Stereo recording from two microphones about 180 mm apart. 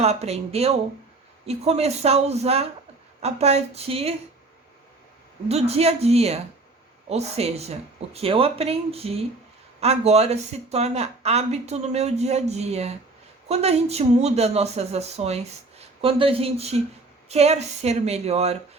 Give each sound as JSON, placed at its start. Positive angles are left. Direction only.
{"t": 0.0, "sound": "speech", "side_deg": -35}
{"t": 5.5, "sound": "speech", "side_deg": -35}